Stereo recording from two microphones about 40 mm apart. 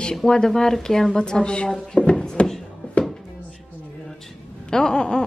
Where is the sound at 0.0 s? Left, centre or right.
Centre.